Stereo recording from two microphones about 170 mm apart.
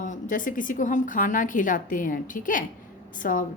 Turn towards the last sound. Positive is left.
turn(degrees=50)  # may be behind; listen again after turning